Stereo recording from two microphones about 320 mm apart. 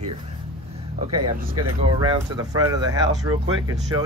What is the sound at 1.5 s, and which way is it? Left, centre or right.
Speech, right.